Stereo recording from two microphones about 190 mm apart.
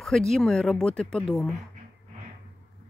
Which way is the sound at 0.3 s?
5° left (ahead or behind).